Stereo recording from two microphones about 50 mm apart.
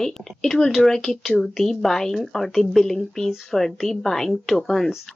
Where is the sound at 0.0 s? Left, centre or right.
Centre.